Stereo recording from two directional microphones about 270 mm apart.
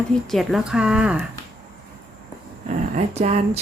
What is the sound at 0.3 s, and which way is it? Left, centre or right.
Speech, centre.